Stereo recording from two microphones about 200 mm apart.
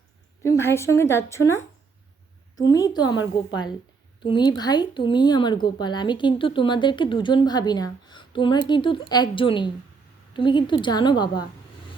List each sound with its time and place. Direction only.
0.6 s a woman's voice: 15° left (ahead or behind)
4.2 s speech: 25° left (ahead or behind)